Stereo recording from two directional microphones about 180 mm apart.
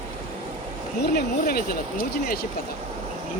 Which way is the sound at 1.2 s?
55° left (ahead or behind).